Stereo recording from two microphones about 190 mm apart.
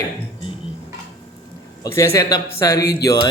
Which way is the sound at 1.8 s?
15° left (ahead or behind).